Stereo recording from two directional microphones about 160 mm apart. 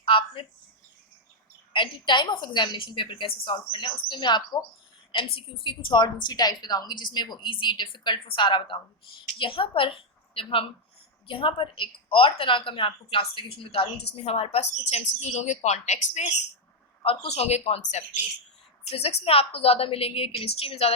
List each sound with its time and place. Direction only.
0.0 s speech: 35° left (ahead or behind)
1.7 s a woman's voice: 30° left (ahead or behind)